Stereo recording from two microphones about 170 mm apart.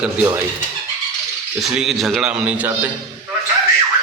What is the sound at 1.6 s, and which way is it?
A man's voice, centre (ahead or behind).